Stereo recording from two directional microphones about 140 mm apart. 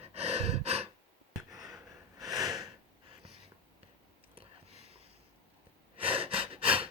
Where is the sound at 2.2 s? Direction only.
25° right (ahead or behind).